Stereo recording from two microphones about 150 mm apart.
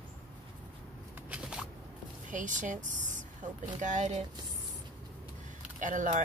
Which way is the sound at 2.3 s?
55° right (ahead or behind).